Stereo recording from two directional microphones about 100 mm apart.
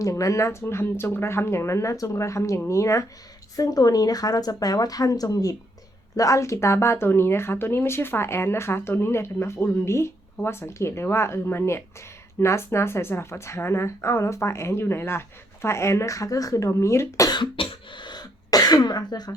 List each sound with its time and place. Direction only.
0.0 s speech: 35° left (ahead or behind)
17.3 s cough: 50° left (ahead or behind)